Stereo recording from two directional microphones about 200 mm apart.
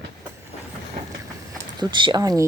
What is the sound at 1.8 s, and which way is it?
Speech, 25° right (ahead or behind).